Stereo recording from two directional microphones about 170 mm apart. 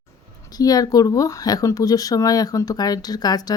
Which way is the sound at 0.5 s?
20° left (ahead or behind).